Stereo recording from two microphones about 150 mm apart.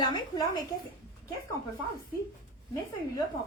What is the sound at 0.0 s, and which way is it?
Speech, 30° left (ahead or behind).